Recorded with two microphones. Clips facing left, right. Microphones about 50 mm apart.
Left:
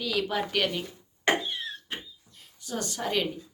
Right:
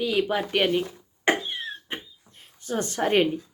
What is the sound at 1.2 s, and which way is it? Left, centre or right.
Cough, right.